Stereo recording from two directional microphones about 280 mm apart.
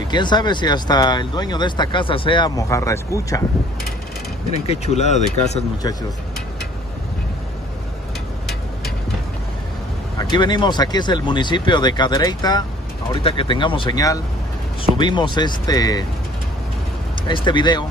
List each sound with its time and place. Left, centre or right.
0.1 s speech: centre
4.5 s speech: left
10.3 s speech: centre
17.3 s speech: centre